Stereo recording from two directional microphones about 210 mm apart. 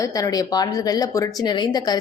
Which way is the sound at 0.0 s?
15° left (ahead or behind).